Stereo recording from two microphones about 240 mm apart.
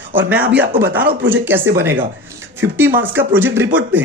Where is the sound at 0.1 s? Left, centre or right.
Centre.